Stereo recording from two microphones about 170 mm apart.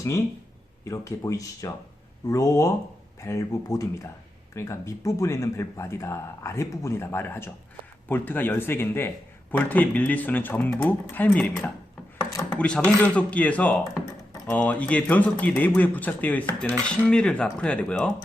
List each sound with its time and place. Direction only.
0.9 s speech: 15° left (ahead or behind)